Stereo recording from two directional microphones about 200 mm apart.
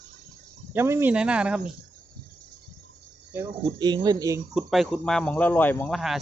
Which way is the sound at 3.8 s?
20° right (ahead or behind).